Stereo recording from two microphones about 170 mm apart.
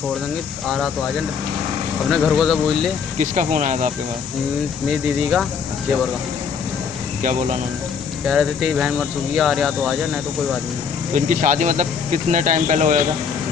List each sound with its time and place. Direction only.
2.0 s speech: centre (ahead or behind)
3.2 s speech: 45° right (ahead or behind)
8.3 s speech: centre (ahead or behind)
11.1 s speech: 50° right (ahead or behind)